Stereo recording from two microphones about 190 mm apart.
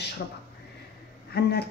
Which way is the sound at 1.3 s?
60° left (ahead or behind).